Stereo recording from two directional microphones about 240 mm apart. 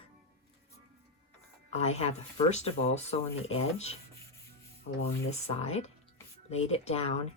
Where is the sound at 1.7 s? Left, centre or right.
Left.